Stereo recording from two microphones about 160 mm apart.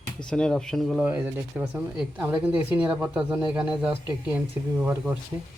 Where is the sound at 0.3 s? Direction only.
5° left (ahead or behind).